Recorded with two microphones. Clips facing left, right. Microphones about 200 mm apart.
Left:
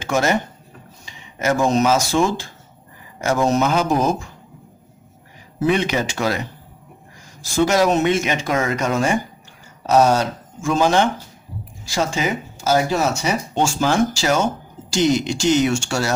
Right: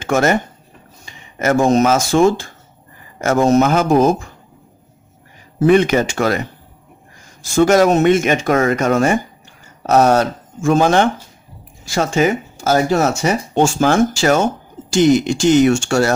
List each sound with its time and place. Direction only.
0.0 s speech: 55° right (ahead or behind)
5.6 s speech: 50° right (ahead or behind)
7.5 s speech: 50° right (ahead or behind)